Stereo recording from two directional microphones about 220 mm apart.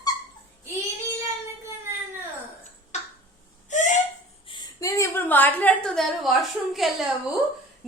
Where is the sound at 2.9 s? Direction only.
30° left (ahead or behind).